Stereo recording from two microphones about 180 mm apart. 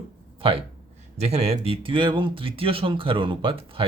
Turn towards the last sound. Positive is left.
turn(degrees=-30)  # may be behind; listen again after turning